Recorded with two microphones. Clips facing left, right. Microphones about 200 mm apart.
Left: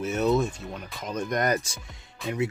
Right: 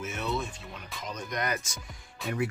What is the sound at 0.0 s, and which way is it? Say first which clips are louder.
Speech: left 9 dB; 40° left (ahead or behind).